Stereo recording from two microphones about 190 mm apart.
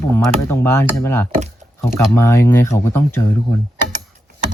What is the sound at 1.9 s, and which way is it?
Speech, 15° left (ahead or behind).